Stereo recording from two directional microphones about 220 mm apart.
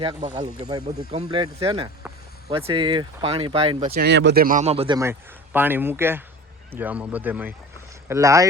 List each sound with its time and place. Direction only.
0.0 s speech: 20° right (ahead or behind)
3.9 s speech: 50° right (ahead or behind); by 4.9 s 25° right (ahead or behind)
5.5 s speech: 10° right (ahead or behind)